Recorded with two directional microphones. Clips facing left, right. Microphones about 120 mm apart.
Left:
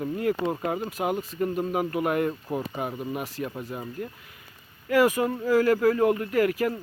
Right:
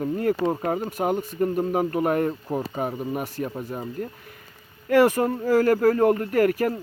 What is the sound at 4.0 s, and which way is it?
Speech, 45° right (ahead or behind).